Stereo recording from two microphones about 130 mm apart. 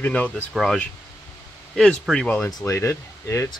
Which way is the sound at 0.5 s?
5° left (ahead or behind).